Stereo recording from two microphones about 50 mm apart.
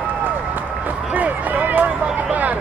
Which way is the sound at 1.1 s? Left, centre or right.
Right.